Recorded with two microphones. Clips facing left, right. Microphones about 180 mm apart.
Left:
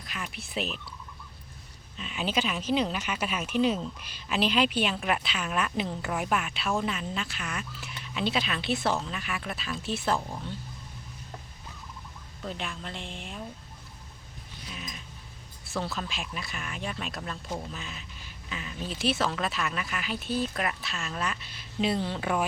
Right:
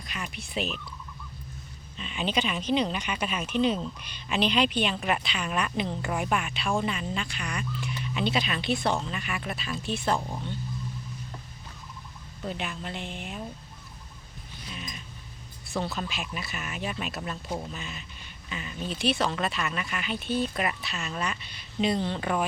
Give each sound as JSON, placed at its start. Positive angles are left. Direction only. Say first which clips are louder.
{"t": 0.0, "sound": "speech", "louder": "right 1 dB", "side_deg": 0}
{"t": 2.0, "sound": "speech", "louder": "right 1 dB", "side_deg": 5}
{"t": 12.4, "sound": "speech", "louder": "right 2 dB", "side_deg": -5}
{"t": 14.7, "sound": "a sound", "louder": "right 1 dB", "side_deg": 0}
{"t": 15.6, "sound": "speech", "louder": "right 2 dB", "side_deg": 0}